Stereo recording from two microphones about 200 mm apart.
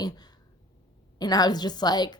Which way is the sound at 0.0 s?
20° left (ahead or behind).